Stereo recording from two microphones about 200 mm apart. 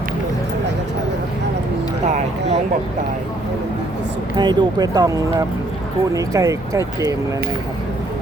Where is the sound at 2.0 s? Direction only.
35° right (ahead or behind).